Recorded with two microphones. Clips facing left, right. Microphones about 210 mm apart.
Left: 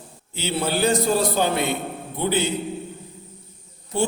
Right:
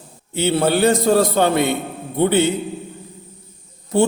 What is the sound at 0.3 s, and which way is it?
A man's voice, 60° right (ahead or behind).